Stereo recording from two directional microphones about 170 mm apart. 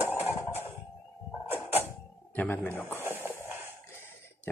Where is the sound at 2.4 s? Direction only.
15° left (ahead or behind).